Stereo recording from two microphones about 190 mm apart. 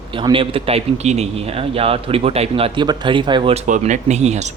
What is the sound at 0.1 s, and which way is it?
A man's voice, 25° right (ahead or behind).